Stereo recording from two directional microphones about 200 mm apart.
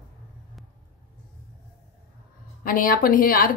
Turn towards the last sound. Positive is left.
turn(degrees=45)  # may be behind; listen again after turning